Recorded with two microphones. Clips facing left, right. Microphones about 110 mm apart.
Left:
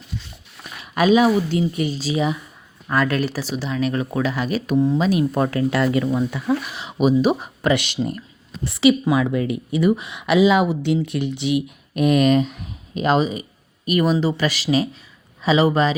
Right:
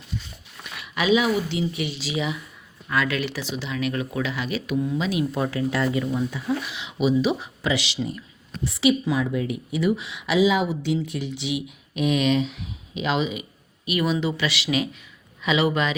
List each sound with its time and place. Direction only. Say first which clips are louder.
0.6 s speech: left 7 dB; 40° left (ahead or behind); by 6.6 s 65° left (ahead or behind)
6.7 s speech: left 4 dB; 45° left (ahead or behind)
8.6 s speech: left 5 dB; 65° left (ahead or behind); by 16.0 s 35° left (ahead or behind)